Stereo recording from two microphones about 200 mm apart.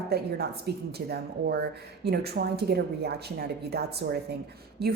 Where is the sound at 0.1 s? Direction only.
50° right (ahead or behind).